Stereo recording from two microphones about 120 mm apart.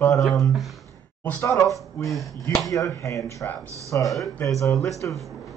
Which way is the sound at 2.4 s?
30° left (ahead or behind).